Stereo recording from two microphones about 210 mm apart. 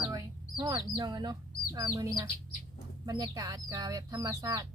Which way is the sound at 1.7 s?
15° right (ahead or behind).